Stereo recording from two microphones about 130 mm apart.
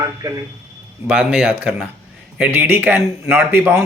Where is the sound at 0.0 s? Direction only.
25° right (ahead or behind).